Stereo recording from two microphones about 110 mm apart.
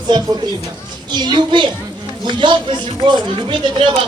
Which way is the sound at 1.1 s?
40° right (ahead or behind).